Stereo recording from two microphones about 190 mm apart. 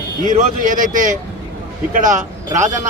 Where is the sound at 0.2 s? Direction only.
45° right (ahead or behind).